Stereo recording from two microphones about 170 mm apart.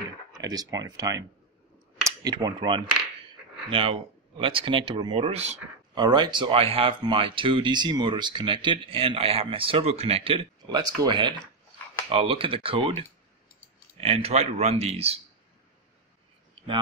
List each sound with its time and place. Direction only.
0.4 s speech: 20° right (ahead or behind); by 5.6 s 40° right (ahead or behind)
5.9 s speech: 25° right (ahead or behind)
14.0 s speech: 35° right (ahead or behind)